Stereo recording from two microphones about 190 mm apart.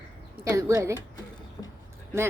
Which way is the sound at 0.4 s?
15° right (ahead or behind).